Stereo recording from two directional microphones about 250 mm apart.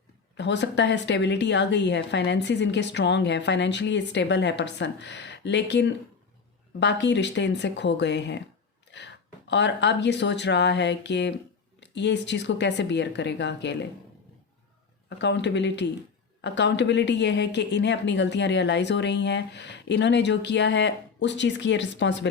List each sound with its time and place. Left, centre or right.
0.3 s a woman's voice: left
15.2 s a woman's voice: left